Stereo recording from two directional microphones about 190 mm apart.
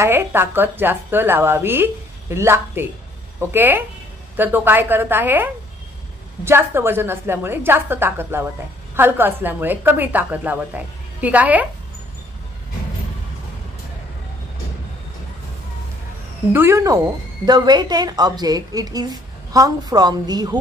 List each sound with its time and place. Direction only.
0.0 s speech: 10° right (ahead or behind)
16.5 s a woman's voice: 15° right (ahead or behind)